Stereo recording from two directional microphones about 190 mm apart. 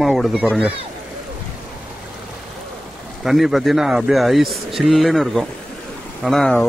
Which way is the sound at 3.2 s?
Centre (ahead or behind).